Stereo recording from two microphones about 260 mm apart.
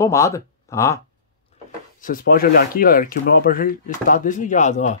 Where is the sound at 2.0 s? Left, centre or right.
Left.